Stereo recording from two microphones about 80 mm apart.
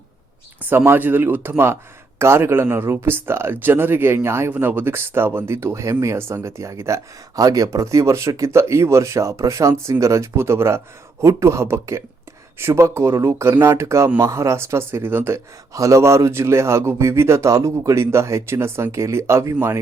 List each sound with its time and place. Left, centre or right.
0.9 s a man's voice: right